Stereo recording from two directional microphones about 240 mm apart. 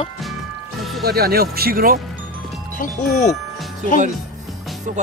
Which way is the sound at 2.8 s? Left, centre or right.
Left.